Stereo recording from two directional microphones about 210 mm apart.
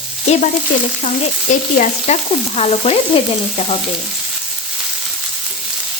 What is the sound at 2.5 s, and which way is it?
Frying, 30° left (ahead or behind).